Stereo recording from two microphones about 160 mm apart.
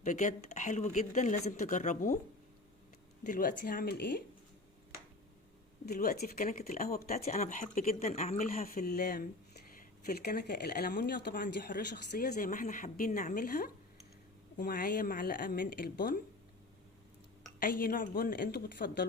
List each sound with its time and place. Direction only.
0.0 s speech: 50° left (ahead or behind)
3.2 s speech: 60° left (ahead or behind); by 4.2 s 90° left
5.9 s speech: 75° left (ahead or behind)
7.3 s a woman's voice: 50° left (ahead or behind); by 12.5 s 75° left (ahead or behind)
12.5 s a woman's voice: 55° left (ahead or behind)
17.6 s a woman's voice: 65° left (ahead or behind)